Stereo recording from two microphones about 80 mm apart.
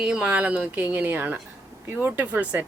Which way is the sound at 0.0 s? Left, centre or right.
Centre.